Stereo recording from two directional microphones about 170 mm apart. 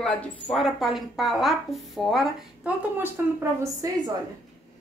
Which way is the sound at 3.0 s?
15° right (ahead or behind).